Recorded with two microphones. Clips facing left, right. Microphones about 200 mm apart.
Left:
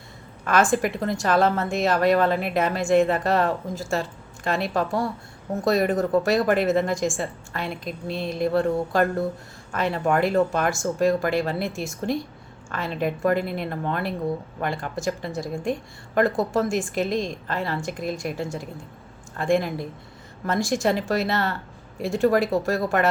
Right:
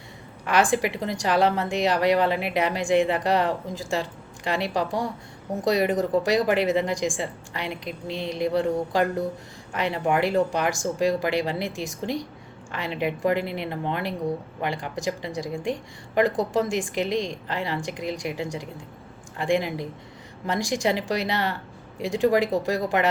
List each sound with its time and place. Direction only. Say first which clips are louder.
0.4 s a woman's voice: left 1 dB; 15° right (ahead or behind)